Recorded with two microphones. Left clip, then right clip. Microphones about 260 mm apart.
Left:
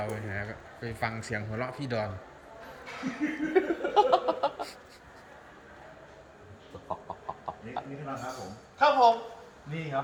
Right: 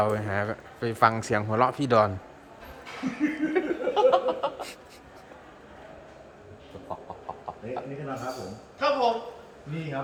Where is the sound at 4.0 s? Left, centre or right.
Left.